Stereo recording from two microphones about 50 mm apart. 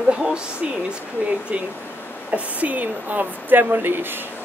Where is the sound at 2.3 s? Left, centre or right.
Right.